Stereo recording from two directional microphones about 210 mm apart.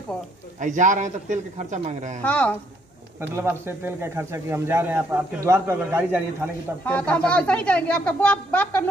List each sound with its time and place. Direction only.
0.6 s a man's voice: 35° right (ahead or behind)
2.2 s speech: 5° left (ahead or behind)
3.2 s speech: 10° right (ahead or behind)
6.9 s speech: 5° left (ahead or behind)